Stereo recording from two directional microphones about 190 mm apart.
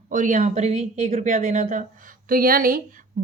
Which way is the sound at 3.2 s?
45° right (ahead or behind).